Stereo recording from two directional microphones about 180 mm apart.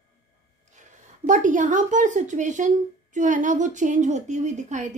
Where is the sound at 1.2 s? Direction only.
45° right (ahead or behind).